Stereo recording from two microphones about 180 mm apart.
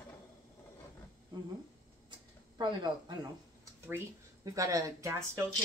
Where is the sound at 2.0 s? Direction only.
25° right (ahead or behind).